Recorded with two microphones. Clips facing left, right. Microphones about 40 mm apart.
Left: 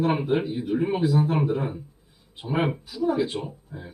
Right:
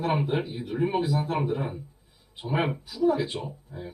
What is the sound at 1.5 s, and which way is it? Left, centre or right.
A man's voice, centre.